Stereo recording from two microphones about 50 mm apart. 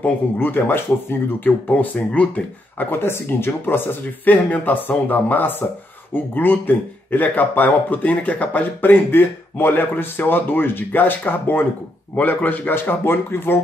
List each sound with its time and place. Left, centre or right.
0.4 s speech: left
1.4 s speech: left
2.8 s speech: left